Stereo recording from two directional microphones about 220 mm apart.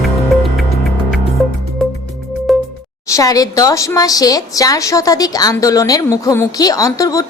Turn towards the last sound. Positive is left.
turn(degrees=15)  # may be behind; listen again after turning